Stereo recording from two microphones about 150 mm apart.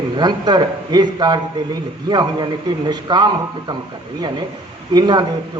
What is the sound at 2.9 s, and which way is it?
Speech, 30° right (ahead or behind).